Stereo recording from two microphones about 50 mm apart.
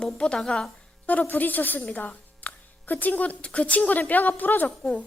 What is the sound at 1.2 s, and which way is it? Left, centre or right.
A woman's voice, left.